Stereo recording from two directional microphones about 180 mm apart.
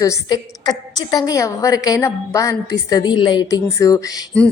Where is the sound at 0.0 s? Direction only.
20° left (ahead or behind).